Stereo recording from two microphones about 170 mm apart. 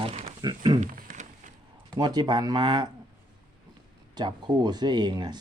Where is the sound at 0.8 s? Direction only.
45° right (ahead or behind).